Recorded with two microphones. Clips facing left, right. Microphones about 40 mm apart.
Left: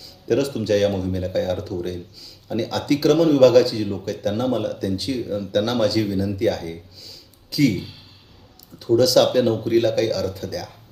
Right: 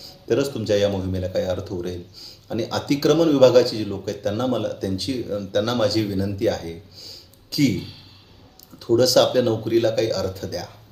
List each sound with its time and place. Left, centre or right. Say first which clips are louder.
0.0 s a sound: even; centre
0.6 s speech: left 1 dB; centre
3.8 s speech: left 2 dB; centre
4.6 s speech: left 1 dB; centre
6.3 s speech: left 1 dB; centre